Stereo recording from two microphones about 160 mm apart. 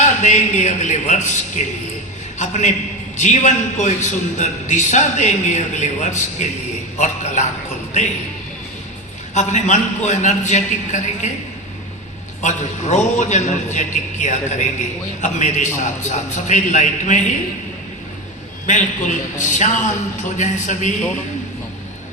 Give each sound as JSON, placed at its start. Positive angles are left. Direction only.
{"t": 0.2, "sound": "a man's voice", "side_deg": 50}
{"t": 9.3, "sound": "a man's voice", "side_deg": 45}
{"t": 12.4, "sound": "a man's voice", "side_deg": 45}
{"t": 18.6, "sound": "a man's voice", "side_deg": 50}